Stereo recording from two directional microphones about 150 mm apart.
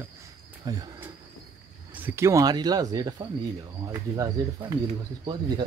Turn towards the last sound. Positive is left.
turn(degrees=-30)  # may be behind; listen again after turning